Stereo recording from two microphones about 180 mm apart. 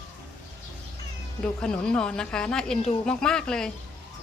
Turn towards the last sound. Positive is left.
turn(degrees=5)  # may be behind; listen again after turning